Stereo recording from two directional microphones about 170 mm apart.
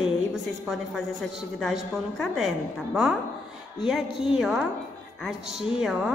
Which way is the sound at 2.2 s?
Centre (ahead or behind).